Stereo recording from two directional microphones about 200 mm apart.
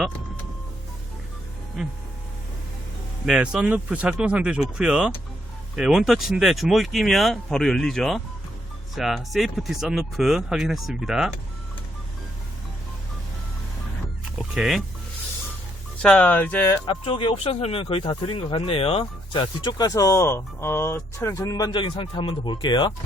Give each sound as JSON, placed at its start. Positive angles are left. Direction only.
{"t": 3.2, "sound": "speech", "side_deg": -5}
{"t": 14.3, "sound": "dog", "side_deg": -5}
{"t": 16.0, "sound": "speech", "side_deg": 5}
{"t": 16.8, "sound": "speech", "side_deg": 25}